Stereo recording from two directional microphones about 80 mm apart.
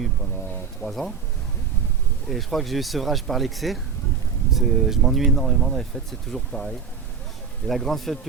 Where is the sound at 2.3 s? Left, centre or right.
Centre.